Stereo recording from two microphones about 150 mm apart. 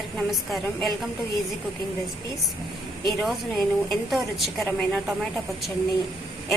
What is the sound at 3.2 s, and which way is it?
A woman's voice, centre (ahead or behind).